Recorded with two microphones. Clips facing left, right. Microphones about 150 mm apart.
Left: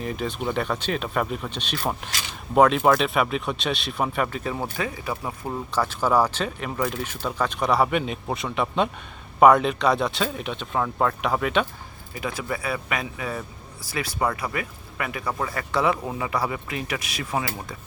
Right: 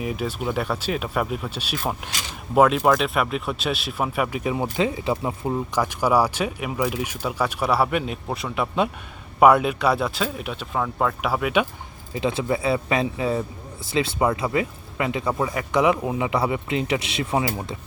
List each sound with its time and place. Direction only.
0.0 s speech: 5° right (ahead or behind)
12.1 s speech: 25° right (ahead or behind)